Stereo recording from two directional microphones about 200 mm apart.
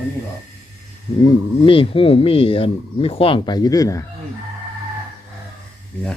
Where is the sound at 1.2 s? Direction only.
25° left (ahead or behind).